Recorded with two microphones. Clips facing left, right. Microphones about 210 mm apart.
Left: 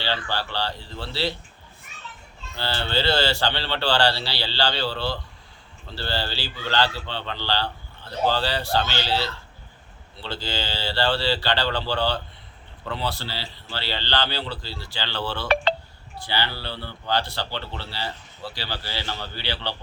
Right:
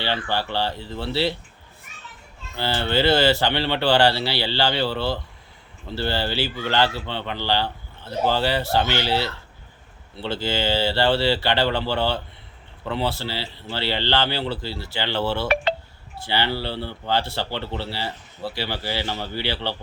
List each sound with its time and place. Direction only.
0.0 s a man's voice: 20° right (ahead or behind)
2.6 s a man's voice: 15° right (ahead or behind)